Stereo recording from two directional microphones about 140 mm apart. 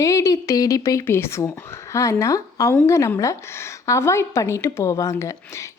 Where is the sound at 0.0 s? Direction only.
25° left (ahead or behind).